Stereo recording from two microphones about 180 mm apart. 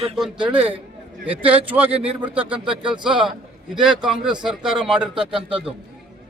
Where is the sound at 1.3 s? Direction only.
10° right (ahead or behind).